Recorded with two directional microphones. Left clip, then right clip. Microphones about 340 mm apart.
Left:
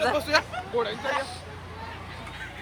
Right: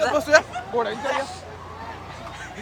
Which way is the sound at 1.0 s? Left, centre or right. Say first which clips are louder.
Right 3 dB; centre.